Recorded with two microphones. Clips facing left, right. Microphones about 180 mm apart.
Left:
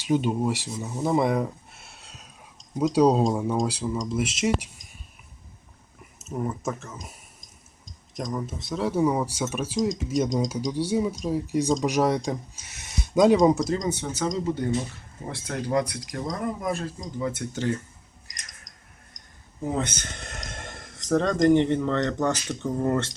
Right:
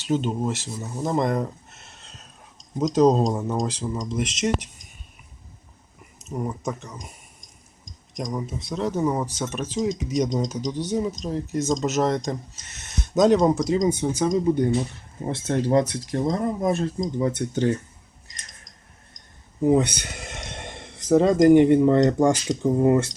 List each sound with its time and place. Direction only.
0.0 s speech: 10° left (ahead or behind)
0.7 s a sound: 5° left (ahead or behind)
2.9 s speech: 10° left (ahead or behind)
6.0 s speech: 5° left (ahead or behind)
13.7 s speech: 15° right (ahead or behind)
18.3 s a sound: 25° right (ahead or behind)
19.6 s speech: 15° right (ahead or behind)